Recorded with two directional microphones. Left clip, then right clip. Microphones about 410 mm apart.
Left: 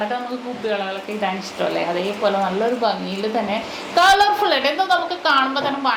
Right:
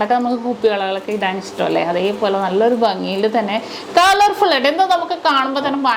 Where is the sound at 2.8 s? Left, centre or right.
Right.